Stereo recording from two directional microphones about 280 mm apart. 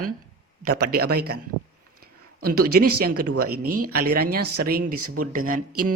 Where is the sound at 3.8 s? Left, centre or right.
Right.